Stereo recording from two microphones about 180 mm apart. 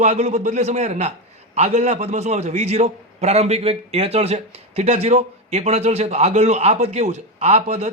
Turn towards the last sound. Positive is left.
turn(degrees=-40)  # may be behind; listen again after turning